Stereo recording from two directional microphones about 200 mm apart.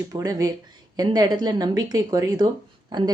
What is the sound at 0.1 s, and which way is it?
Speech, 15° right (ahead or behind).